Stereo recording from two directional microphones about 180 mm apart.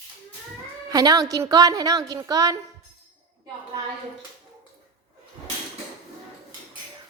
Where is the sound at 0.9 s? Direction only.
20° right (ahead or behind).